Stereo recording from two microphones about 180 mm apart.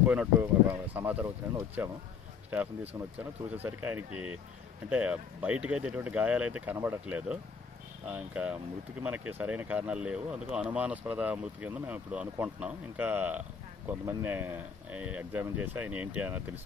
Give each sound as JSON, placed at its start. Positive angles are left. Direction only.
{"t": 0.0, "sound": "speech", "side_deg": -10}